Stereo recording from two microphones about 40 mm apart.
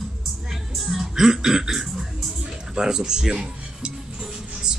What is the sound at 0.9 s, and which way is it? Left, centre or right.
Music, centre.